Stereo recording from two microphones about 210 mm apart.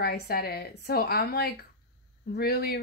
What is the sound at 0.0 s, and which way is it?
A woman's voice, 45° left (ahead or behind).